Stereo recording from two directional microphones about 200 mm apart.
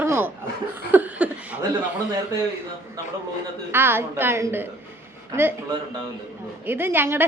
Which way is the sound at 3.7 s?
10° right (ahead or behind).